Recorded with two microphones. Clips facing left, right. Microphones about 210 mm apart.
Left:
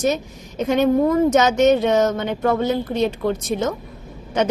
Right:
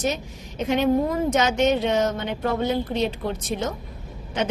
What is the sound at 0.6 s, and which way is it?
A woman's voice, 40° left (ahead or behind).